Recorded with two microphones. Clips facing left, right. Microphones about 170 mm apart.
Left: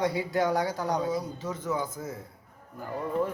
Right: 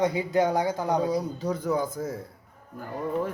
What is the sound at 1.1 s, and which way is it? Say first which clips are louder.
Speech: right 4 dB; 35° right (ahead or behind).